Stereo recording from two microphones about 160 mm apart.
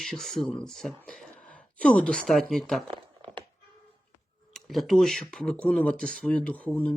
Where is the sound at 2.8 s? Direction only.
35° right (ahead or behind).